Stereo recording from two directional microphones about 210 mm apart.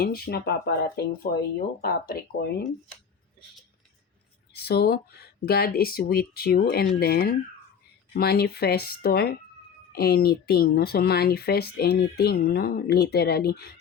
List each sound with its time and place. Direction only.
0.0 s speech: 45° left (ahead or behind)
4.5 s speech: 50° left (ahead or behind)